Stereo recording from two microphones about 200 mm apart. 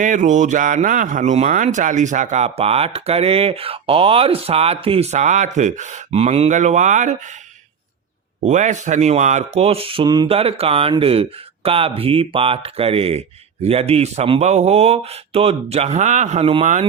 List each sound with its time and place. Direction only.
0.0 s speech: 40° right (ahead or behind)
8.4 s speech: 35° right (ahead or behind)